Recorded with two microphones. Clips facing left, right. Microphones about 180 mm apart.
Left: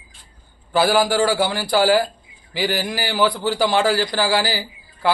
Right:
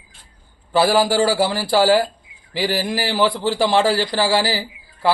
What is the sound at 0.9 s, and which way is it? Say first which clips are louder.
Speech: even; 30° right (ahead or behind).